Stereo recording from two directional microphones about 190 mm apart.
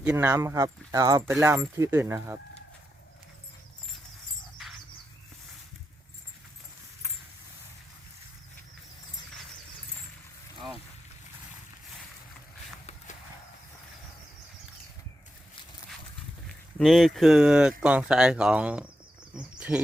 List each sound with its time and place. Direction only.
0.0 s speech: 10° right (ahead or behind)
4.6 s bird: centre (ahead or behind)
16.7 s speech: centre (ahead or behind)
19.3 s a sound: 5° right (ahead or behind)